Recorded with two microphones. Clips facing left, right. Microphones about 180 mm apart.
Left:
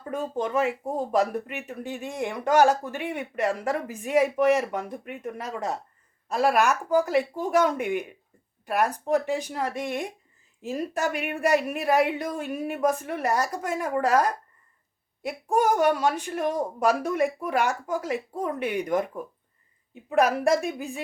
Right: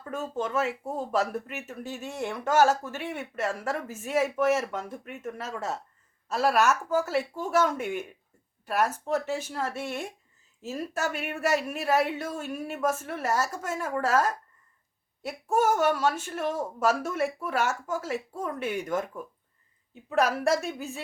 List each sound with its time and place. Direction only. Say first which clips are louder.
0.0 s speech: left 3 dB; 15° left (ahead or behind)
20.1 s speech: left 3 dB; 60° left (ahead or behind)